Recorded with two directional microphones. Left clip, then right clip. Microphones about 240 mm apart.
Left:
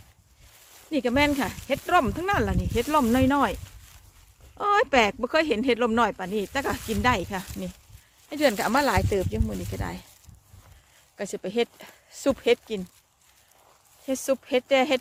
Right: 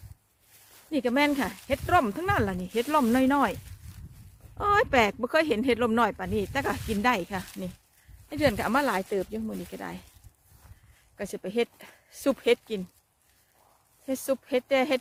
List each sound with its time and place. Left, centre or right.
0.9 s speech: centre
6.7 s speech: left
7.0 s speech: centre
11.2 s speech: centre
14.1 s speech: centre